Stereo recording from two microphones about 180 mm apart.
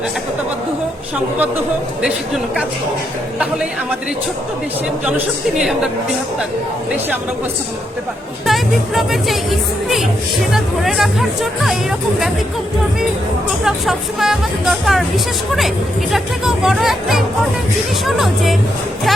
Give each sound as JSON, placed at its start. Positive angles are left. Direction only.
{"t": 2.0, "sound": "speech", "side_deg": -5}
{"t": 5.0, "sound": "speech", "side_deg": -5}
{"t": 8.4, "sound": "speech", "side_deg": 0}
{"t": 13.7, "sound": "speech", "side_deg": 0}